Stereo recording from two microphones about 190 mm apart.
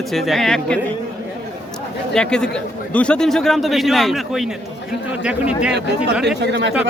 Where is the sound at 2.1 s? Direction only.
5° left (ahead or behind).